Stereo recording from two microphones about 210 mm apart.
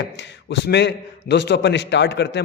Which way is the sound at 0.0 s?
55° left (ahead or behind).